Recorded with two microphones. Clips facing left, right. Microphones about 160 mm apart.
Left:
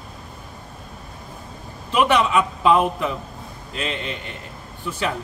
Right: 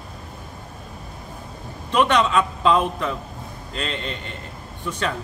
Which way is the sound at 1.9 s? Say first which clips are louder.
Even; 10° left (ahead or behind).